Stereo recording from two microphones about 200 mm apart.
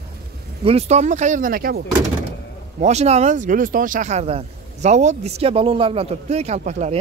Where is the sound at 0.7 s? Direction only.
30° right (ahead or behind).